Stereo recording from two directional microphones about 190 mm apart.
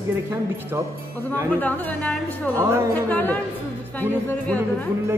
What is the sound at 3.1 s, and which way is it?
Speech, 10° left (ahead or behind).